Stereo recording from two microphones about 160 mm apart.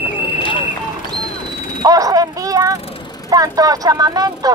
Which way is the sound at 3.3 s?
25° right (ahead or behind).